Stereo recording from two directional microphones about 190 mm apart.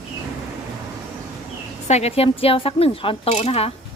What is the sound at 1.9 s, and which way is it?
A woman's voice, 35° left (ahead or behind).